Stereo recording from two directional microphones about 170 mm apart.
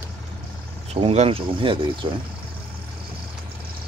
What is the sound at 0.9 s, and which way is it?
Speech, 35° right (ahead or behind).